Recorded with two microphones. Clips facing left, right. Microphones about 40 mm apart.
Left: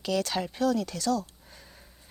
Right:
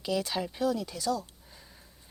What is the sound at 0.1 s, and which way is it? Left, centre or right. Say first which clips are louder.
Speech: left 2 dB; left.